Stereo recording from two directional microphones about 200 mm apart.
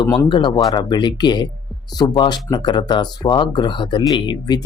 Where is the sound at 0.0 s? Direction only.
25° left (ahead or behind).